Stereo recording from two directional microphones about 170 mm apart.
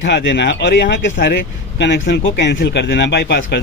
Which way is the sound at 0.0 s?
90° left.